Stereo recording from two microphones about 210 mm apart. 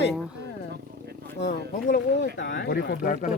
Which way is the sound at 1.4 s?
55° left (ahead or behind).